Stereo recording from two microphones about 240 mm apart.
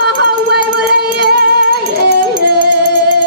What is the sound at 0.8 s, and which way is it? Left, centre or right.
Child singing, right.